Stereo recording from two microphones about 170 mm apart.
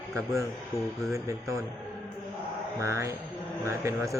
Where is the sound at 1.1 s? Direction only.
20° right (ahead or behind).